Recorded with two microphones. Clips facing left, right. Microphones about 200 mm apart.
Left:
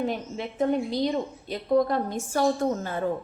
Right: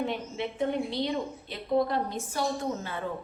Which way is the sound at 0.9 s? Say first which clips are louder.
Left 4 dB; 40° left (ahead or behind).